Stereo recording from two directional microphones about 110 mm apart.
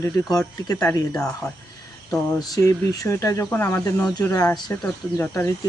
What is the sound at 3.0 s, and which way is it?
Speech, 30° left (ahead or behind).